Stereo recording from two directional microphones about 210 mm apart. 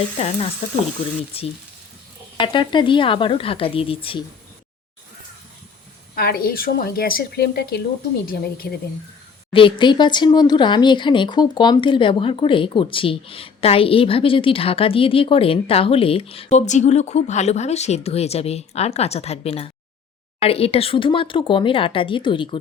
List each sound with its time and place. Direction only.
0.2 s speech: 30° left (ahead or behind)
6.1 s a woman's voice: 45° left (ahead or behind)
9.5 s speech: 25° left (ahead or behind)